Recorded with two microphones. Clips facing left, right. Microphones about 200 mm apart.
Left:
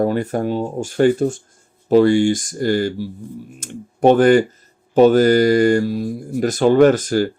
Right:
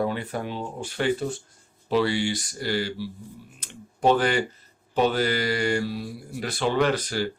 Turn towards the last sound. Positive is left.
turn(degrees=45)  # may be behind; listen again after turning